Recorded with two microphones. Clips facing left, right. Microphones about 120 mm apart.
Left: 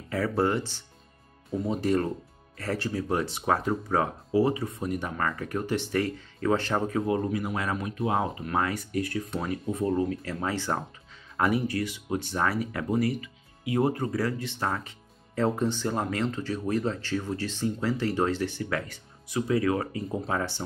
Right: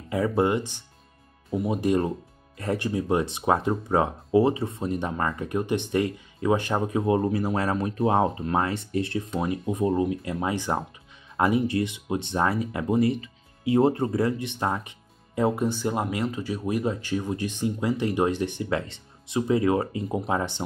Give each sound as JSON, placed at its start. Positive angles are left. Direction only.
{"t": 0.1, "sound": "speech", "side_deg": -20}
{"t": 7.0, "sound": "speech", "side_deg": -30}